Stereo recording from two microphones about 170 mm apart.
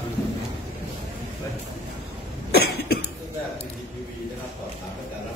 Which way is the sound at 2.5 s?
70° left (ahead or behind).